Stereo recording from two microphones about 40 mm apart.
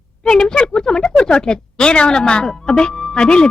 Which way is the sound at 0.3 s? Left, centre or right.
Centre.